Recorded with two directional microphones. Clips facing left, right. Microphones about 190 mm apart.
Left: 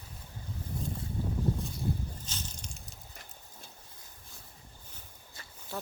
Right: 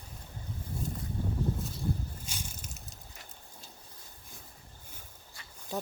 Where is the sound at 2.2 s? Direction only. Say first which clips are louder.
Even; 10° right (ahead or behind).